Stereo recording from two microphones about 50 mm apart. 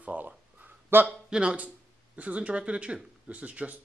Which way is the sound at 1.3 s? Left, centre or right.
Right.